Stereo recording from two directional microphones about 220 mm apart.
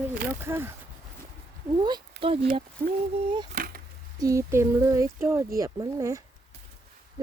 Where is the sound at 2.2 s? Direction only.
50° right (ahead or behind).